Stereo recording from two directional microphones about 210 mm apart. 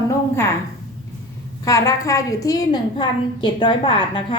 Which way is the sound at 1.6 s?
15° left (ahead or behind).